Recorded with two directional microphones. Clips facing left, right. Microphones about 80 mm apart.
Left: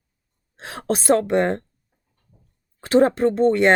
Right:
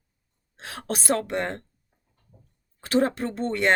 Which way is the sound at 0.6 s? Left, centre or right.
Left.